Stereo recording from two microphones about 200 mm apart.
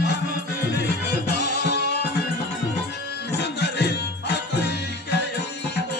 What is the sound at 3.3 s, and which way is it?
Music, 60° left (ahead or behind).